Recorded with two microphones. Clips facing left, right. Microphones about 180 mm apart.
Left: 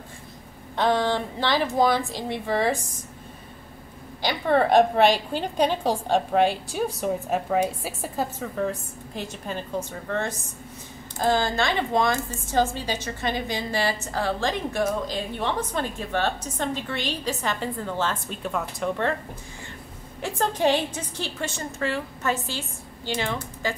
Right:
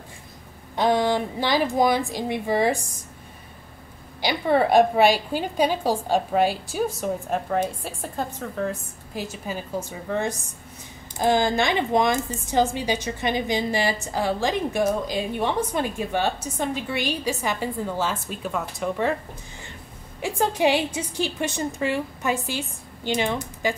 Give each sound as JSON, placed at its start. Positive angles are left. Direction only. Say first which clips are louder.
{"t": 0.7, "sound": "a woman's voice", "louder": "right 2 dB", "side_deg": -15}
{"t": 4.2, "sound": "a woman's voice", "louder": "right 1 dB", "side_deg": -10}
{"t": 20.2, "sound": "a woman's voice", "louder": "right 2 dB", "side_deg": -10}